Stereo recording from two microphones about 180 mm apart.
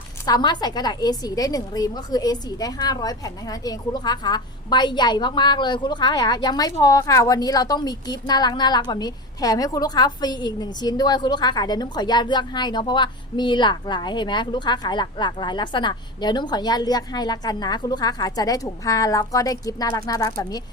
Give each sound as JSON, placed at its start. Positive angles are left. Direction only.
{"t": 0.3, "sound": "a woman's voice", "side_deg": 20}